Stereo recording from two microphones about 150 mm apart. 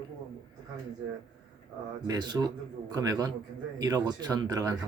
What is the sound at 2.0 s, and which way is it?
Speech, 30° right (ahead or behind).